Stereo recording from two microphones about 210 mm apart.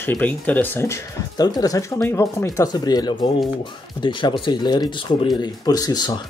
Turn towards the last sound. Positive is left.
turn(degrees=20)  # may be behind; listen again after turning